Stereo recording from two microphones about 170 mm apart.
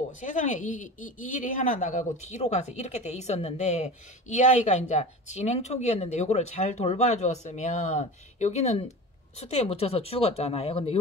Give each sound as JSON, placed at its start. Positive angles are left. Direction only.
{"t": 0.2, "sound": "speech", "side_deg": 45}